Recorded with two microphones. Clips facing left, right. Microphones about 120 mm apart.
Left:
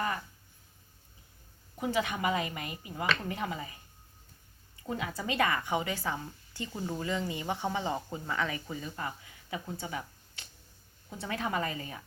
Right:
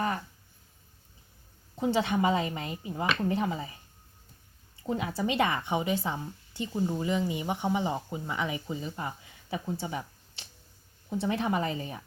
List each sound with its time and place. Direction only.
1.7 s a woman's voice: 25° right (ahead or behind)
4.8 s a woman's voice: 25° right (ahead or behind)